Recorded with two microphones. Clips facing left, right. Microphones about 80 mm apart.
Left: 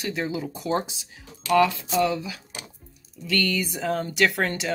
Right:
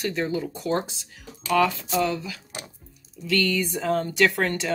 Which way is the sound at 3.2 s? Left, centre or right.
Centre.